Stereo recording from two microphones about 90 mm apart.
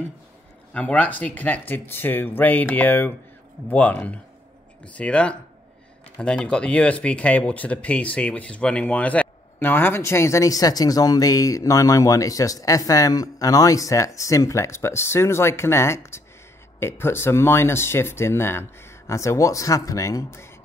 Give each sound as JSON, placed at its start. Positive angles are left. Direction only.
{"t": 0.7, "sound": "speech", "side_deg": 15}